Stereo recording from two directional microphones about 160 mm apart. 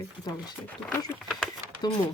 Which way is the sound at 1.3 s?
5° left (ahead or behind).